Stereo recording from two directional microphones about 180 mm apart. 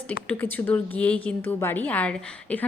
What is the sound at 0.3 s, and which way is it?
A woman's voice, 10° left (ahead or behind).